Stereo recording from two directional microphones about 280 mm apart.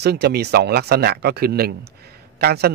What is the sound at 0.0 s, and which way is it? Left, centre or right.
Speech, right.